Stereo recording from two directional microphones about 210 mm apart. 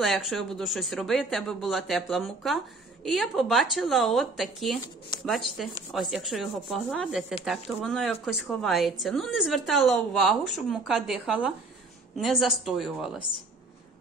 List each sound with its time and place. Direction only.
0.0 s speech: centre (ahead or behind)